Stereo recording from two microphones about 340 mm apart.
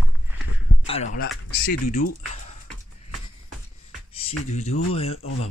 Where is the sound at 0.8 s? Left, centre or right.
Centre.